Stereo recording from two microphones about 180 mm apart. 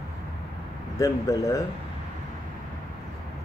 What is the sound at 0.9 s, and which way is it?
Speech, 20° left (ahead or behind).